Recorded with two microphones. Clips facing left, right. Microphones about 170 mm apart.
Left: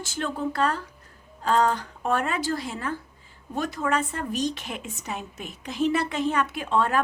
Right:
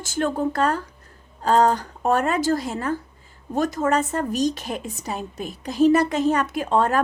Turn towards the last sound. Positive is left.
turn(degrees=-40)  # may be behind; listen again after turning